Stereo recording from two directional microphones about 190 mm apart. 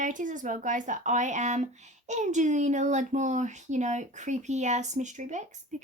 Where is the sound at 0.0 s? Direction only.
45° right (ahead or behind).